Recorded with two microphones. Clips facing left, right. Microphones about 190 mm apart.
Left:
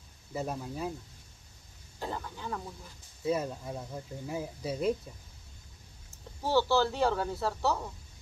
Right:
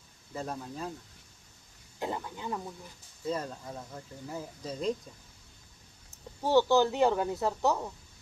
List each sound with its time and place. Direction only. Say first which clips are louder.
0.3 s speech: left 2 dB; 10° left (ahead or behind)
2.0 s speech: right 2 dB; 15° right (ahead or behind)
3.3 s speech: left 3 dB; 10° left (ahead or behind)
6.4 s speech: right 3 dB; 15° right (ahead or behind)